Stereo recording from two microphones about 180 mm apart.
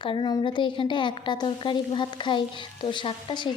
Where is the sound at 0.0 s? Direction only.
25° left (ahead or behind).